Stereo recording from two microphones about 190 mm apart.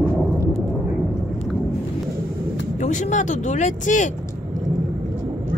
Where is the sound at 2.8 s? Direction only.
40° left (ahead or behind).